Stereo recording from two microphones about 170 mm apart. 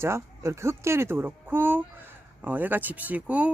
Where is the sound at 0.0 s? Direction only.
15° right (ahead or behind).